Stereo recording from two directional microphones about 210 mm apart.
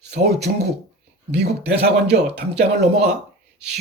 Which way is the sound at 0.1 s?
50° right (ahead or behind).